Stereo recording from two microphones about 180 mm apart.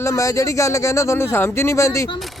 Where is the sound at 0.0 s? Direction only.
20° left (ahead or behind).